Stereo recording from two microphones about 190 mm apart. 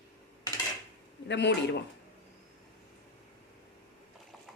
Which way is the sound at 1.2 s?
65° left (ahead or behind).